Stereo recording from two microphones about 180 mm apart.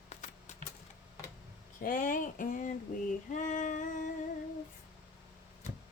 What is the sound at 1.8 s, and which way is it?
Speech, 50° left (ahead or behind).